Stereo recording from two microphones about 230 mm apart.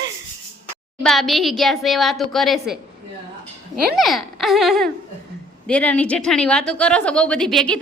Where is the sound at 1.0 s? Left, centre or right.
Centre.